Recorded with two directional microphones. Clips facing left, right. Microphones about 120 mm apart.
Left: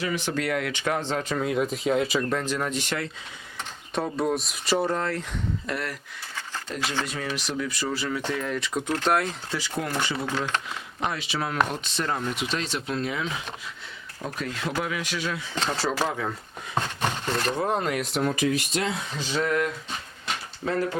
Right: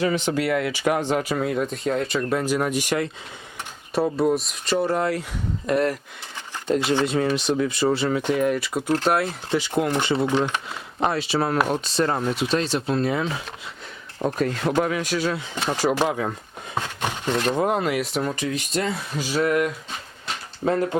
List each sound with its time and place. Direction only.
0.3 s speech: 5° right (ahead or behind)
2.3 s speech: 10° right (ahead or behind); by 4.9 s 5° left (ahead or behind)
4.9 s speech: 10° right (ahead or behind)
5.6 s speech: 25° right (ahead or behind); by 9.2 s 5° right (ahead or behind)
9.5 s speech: 20° right (ahead or behind)
11.0 s speech: 35° right (ahead or behind)
14.3 s speech: 45° right (ahead or behind)
15.5 s speech: 10° right (ahead or behind)
16.7 s a sound: 10° right (ahead or behind)
17.7 s speech: 5° right (ahead or behind)